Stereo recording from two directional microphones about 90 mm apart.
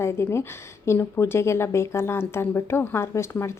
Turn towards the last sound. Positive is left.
turn(degrees=30)  # may be behind; listen again after turning